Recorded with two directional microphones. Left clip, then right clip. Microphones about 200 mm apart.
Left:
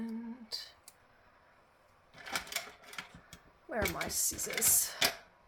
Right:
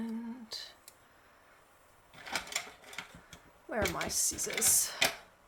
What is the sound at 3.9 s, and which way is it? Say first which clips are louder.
Speech: right 2 dB; 10° right (ahead or behind).